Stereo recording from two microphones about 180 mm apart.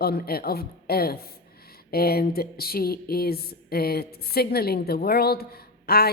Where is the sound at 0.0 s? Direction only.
60° left (ahead or behind).